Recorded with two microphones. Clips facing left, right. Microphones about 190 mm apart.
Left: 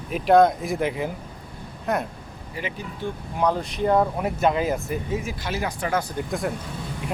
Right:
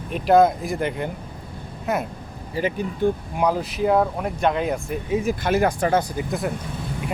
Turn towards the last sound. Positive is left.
turn(degrees=0)  # may be behind; listen again after turning